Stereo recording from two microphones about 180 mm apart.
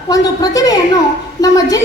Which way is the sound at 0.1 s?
20° left (ahead or behind).